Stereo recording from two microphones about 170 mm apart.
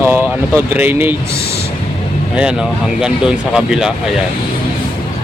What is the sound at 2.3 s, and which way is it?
Speech, 5° right (ahead or behind).